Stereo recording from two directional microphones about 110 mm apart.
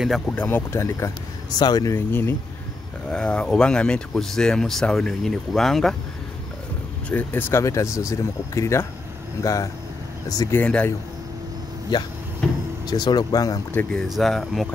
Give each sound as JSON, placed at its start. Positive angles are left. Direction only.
{"t": 0.3, "sound": "speech", "side_deg": 15}
{"t": 2.0, "sound": "speech", "side_deg": 25}
{"t": 3.1, "sound": "speech", "side_deg": 10}
{"t": 7.1, "sound": "speech", "side_deg": 15}
{"t": 10.6, "sound": "speech", "side_deg": 15}
{"t": 11.9, "sound": "speech", "side_deg": 40}
{"t": 12.4, "sound": "vehicle", "side_deg": 5}
{"t": 12.8, "sound": "speech", "side_deg": 40}
{"t": 13.9, "sound": "speech", "side_deg": 0}